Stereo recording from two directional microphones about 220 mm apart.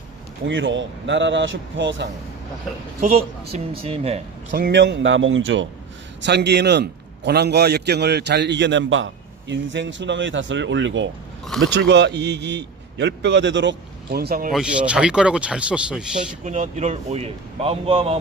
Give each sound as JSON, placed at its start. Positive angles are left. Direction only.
{"t": 0.4, "sound": "speech", "side_deg": -55}
{"t": 3.0, "sound": "speech", "side_deg": -30}
{"t": 4.5, "sound": "a man's voice", "side_deg": -45}
{"t": 14.5, "sound": "a man's voice", "side_deg": -5}
{"t": 16.4, "sound": "speech", "side_deg": -35}